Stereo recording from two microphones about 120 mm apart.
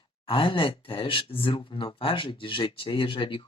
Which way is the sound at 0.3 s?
45° left (ahead or behind).